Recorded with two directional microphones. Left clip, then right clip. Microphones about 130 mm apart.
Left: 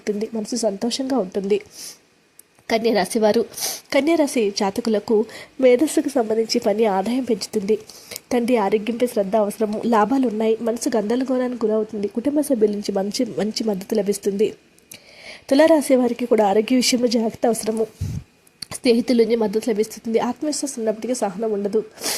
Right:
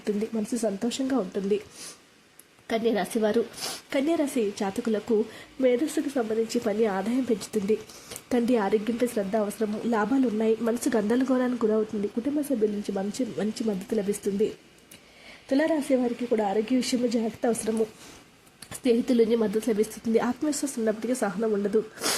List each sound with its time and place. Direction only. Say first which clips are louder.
0.0 s a woman's voice: left 4 dB; 25° left (ahead or behind)
2.6 s a woman's voice: left 7 dB; 40° left (ahead or behind)
5.5 s a woman's voice: left 8 dB; 50° left (ahead or behind)
10.6 s a woman's voice: left 5 dB; 20° left (ahead or behind)
12.2 s a woman's voice: left 9 dB; 50° left (ahead or behind)
15.4 s a woman's voice: left 10 dB; 60° left (ahead or behind); by 21.5 s 15° left (ahead or behind)